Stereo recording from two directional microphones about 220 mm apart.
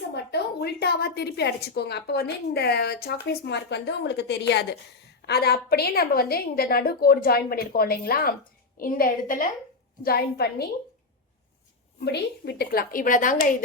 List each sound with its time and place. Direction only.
0.1 s a woman's voice: 50° left (ahead or behind)
11.9 s speech: 50° left (ahead or behind)